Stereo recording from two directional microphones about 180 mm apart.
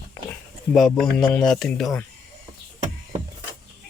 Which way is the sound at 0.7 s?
5° left (ahead or behind).